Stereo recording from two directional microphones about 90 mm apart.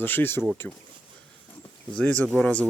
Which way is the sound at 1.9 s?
15° left (ahead or behind).